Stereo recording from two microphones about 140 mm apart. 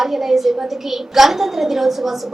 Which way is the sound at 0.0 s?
Centre (ahead or behind).